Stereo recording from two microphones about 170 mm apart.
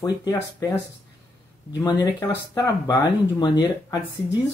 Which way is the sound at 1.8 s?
20° left (ahead or behind).